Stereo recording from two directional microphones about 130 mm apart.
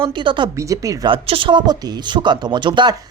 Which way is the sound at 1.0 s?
40° right (ahead or behind).